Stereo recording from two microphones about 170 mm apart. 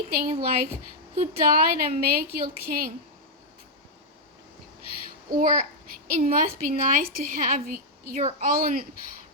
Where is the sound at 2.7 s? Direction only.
55° right (ahead or behind).